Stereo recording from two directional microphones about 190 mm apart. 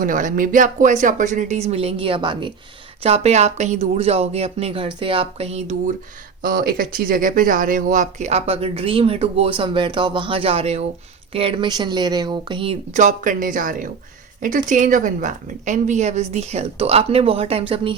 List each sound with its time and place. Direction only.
0.0 s speech: 45° right (ahead or behind)
6.4 s speech: 50° right (ahead or behind); by 13.0 s 30° right (ahead or behind)
13.0 s a woman's voice: 45° right (ahead or behind)